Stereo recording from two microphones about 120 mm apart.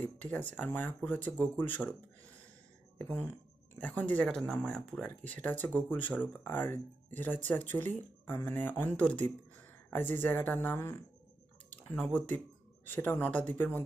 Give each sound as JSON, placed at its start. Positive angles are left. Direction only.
{"t": 0.0, "sound": "speech", "side_deg": 10}
{"t": 3.0, "sound": "speech", "side_deg": 15}
{"t": 11.8, "sound": "speech", "side_deg": 10}